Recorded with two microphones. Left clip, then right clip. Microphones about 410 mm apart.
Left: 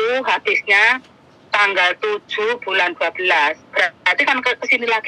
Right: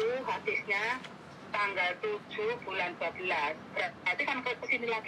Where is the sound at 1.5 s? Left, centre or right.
Left.